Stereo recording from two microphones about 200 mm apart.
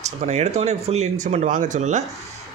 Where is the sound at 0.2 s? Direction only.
35° right (ahead or behind).